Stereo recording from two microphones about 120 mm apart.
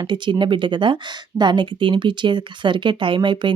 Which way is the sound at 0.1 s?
40° right (ahead or behind).